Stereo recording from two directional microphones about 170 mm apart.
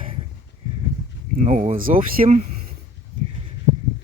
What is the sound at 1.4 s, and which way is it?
Speech, 45° right (ahead or behind).